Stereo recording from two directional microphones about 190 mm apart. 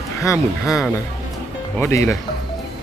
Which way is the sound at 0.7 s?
Centre (ahead or behind).